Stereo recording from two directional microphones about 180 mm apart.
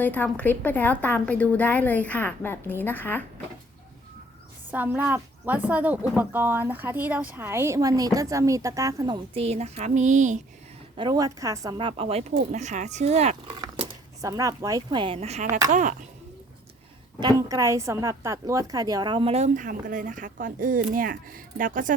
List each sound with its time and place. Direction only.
0.0 s a woman's voice: 10° left (ahead or behind)
4.7 s speech: 10° right (ahead or behind); by 10.4 s 40° right (ahead or behind)
10.9 s speech: 25° right (ahead or behind)
12.4 s a woman's voice: 45° right (ahead or behind)
13.5 s speech: 25° right (ahead or behind)
15.7 s speech: 45° right (ahead or behind)
17.2 s a woman's voice: 20° right (ahead or behind); by 21.9 s 50° right (ahead or behind)